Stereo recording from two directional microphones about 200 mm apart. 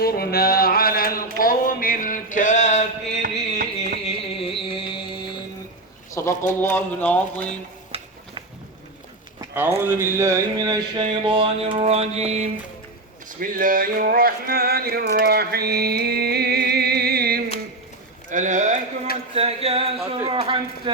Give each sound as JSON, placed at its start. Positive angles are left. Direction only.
{"t": 0.0, "sound": "a sound", "side_deg": 50}
{"t": 3.6, "sound": "music", "side_deg": -50}
{"t": 4.0, "sound": "music", "side_deg": 30}
{"t": 6.1, "sound": "speech", "side_deg": 15}
{"t": 7.9, "sound": "stir", "side_deg": -30}
{"t": 9.4, "sound": "speech", "side_deg": -10}
{"t": 18.3, "sound": "speech", "side_deg": -40}